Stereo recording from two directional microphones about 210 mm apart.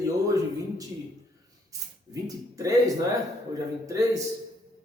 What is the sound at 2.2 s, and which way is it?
A man's voice, 15° right (ahead or behind).